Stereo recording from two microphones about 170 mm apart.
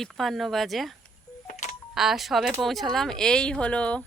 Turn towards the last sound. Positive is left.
turn(degrees=5)  # may be behind; listen again after turning